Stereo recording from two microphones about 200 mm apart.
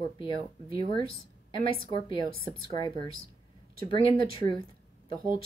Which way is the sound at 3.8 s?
25° left (ahead or behind).